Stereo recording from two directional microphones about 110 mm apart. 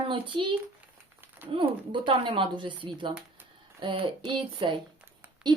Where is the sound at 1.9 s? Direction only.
50° right (ahead or behind).